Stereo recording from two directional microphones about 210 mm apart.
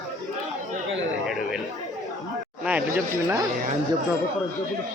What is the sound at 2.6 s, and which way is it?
Speech, 5° right (ahead or behind).